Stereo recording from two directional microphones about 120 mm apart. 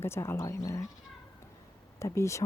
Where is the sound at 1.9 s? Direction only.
25° left (ahead or behind).